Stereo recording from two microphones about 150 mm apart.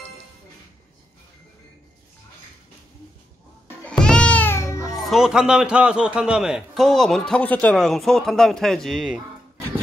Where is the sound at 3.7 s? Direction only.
5° left (ahead or behind); by 5.1 s 25° left (ahead or behind).